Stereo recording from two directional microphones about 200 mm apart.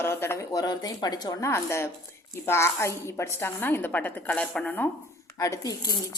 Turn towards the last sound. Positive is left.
turn(degrees=20)  # may be behind; listen again after turning